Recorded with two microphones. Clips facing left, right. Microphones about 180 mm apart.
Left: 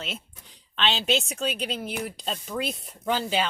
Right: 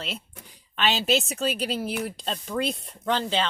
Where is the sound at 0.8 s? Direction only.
5° right (ahead or behind).